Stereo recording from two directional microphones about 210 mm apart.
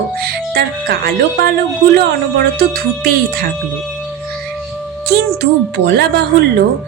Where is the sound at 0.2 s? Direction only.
50° right (ahead or behind).